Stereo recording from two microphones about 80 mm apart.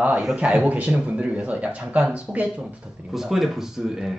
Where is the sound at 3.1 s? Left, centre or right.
Centre.